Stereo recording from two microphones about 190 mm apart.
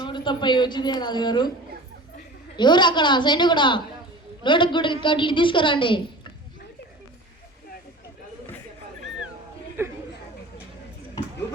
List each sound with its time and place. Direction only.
0.0 s a woman's voice: 25° left (ahead or behind)
2.6 s a woman's voice: 25° left (ahead or behind)
9.8 s chatter: 10° right (ahead or behind)